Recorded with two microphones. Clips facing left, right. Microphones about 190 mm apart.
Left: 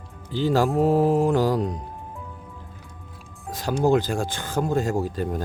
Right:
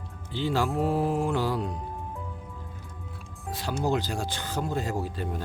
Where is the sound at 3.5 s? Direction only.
45° left (ahead or behind).